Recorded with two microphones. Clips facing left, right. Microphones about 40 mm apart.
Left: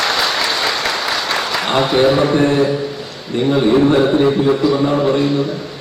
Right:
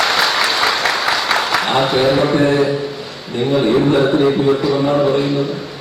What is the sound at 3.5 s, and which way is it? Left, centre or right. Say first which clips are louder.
Speech: left 1 dB; centre.